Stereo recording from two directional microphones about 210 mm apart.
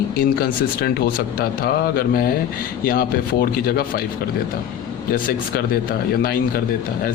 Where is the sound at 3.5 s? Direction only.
45° left (ahead or behind).